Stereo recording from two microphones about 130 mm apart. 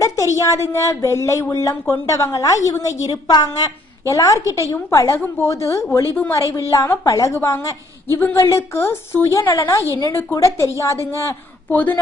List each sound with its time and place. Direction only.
0.0 s a woman's voice: 25° left (ahead or behind)